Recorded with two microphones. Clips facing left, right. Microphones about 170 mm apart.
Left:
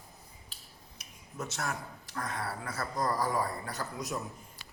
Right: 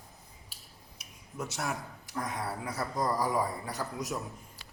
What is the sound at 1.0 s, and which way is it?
Speech, 10° right (ahead or behind).